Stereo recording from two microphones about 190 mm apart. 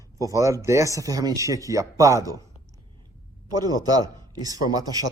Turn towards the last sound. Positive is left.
turn(degrees=-20)  # may be behind; listen again after turning